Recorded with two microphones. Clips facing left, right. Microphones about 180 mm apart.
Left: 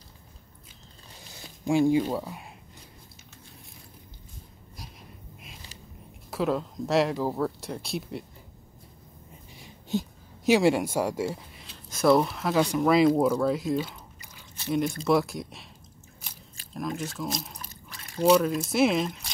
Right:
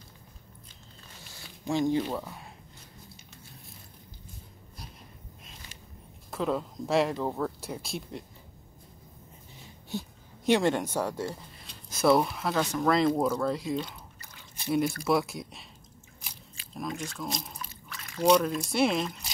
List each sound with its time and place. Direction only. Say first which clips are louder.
1.7 s speech: left 5 dB; 10° left (ahead or behind)
6.3 s speech: left 3 dB; centre (ahead or behind)
9.6 s a sound: left 7 dB; 15° left (ahead or behind)
10.4 s speech: left 3 dB; 5° left (ahead or behind)
14.5 s speech: even; 10° right (ahead or behind)
16.7 s speech: left 3 dB; centre (ahead or behind)
17.6 s drip: right 2 dB; 40° left (ahead or behind)
18.2 s speech: left 2 dB; 5° left (ahead or behind)